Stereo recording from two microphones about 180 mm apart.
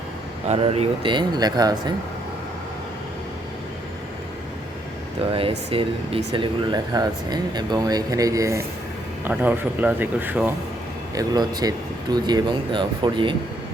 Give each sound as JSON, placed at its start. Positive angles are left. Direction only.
{"t": 0.4, "sound": "speech", "side_deg": -35}
{"t": 5.2, "sound": "speech", "side_deg": -30}
{"t": 11.1, "sound": "speech", "side_deg": -20}